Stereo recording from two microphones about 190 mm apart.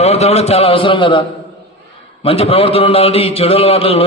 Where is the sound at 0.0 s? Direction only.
35° left (ahead or behind).